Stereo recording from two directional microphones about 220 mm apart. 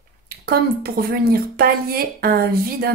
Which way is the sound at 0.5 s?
45° right (ahead or behind).